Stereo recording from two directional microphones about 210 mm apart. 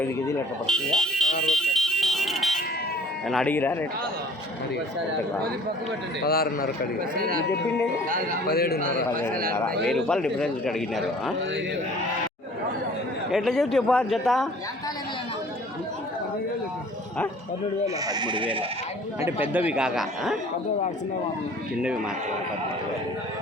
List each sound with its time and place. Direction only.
0.0 s a man's voice: 5° left (ahead or behind)
1.5 s music: centre (ahead or behind)
3.2 s speech: 5° left (ahead or behind)
6.2 s a man's voice: 45° left (ahead or behind)
7.2 s speech: 45° right (ahead or behind)
8.4 s a man's voice: 45° left (ahead or behind)
9.6 s a man's voice: 5° left (ahead or behind)
13.3 s a man's voice: centre (ahead or behind)
17.8 s speech: 20° right (ahead or behind)
19.2 s a man's voice: 10° right (ahead or behind)